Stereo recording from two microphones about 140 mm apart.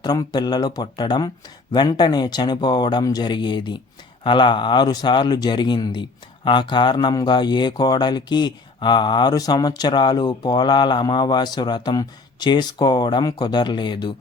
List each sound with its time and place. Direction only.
0.0 s a man's voice: 30° left (ahead or behind)